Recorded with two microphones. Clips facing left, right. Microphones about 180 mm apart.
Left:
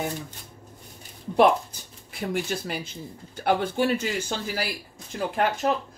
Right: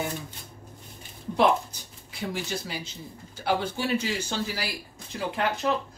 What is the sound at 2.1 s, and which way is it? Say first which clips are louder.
Speech: left 4 dB; 55° left (ahead or behind).